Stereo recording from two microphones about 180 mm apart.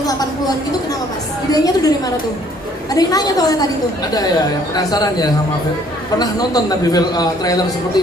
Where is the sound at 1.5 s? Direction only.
20° left (ahead or behind).